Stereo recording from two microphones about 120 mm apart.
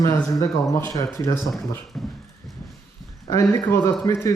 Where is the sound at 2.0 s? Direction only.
Centre (ahead or behind).